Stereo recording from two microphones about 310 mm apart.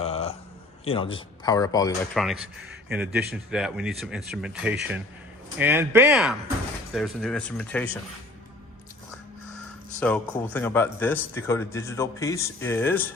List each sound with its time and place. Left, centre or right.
0.0 s a sound: centre
0.9 s speech: centre
2.1 s speech: centre
10.0 s speech: centre